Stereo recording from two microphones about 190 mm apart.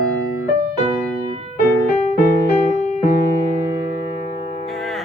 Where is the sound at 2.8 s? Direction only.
40° left (ahead or behind).